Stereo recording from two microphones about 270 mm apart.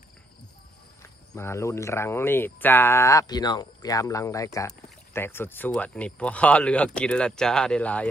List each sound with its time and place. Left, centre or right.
1.3 s speech: centre